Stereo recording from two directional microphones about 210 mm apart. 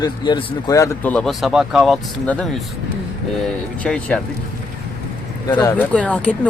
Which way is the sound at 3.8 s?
5° left (ahead or behind).